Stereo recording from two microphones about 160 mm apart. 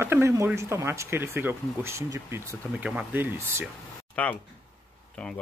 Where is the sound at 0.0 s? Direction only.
15° right (ahead or behind).